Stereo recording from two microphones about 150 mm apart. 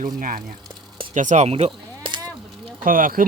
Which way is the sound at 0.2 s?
65° right (ahead or behind).